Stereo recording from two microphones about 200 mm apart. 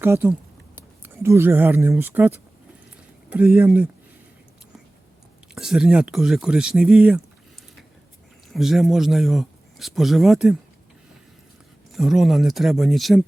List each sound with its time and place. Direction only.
0.0 s speech: 10° right (ahead or behind)
5.5 s speech: centre (ahead or behind)
8.4 s speech: centre (ahead or behind)
11.9 s speech: centre (ahead or behind)